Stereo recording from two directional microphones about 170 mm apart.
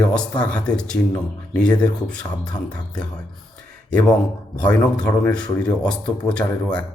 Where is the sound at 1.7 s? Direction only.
25° left (ahead or behind).